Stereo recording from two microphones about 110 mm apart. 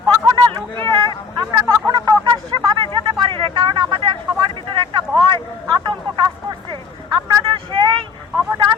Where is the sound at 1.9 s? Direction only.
40° right (ahead or behind).